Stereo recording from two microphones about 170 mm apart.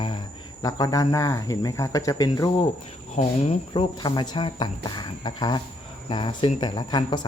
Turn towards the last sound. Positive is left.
turn(degrees=25)  # may be behind; listen again after turning